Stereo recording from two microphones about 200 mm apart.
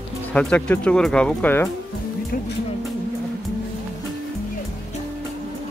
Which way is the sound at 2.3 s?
45° left (ahead or behind).